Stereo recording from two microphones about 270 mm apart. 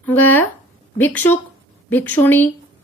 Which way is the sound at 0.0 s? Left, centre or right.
Centre.